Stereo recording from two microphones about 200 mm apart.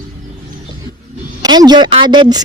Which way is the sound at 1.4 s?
20° right (ahead or behind).